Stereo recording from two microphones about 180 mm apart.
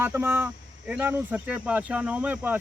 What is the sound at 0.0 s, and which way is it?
Speech, 10° right (ahead or behind).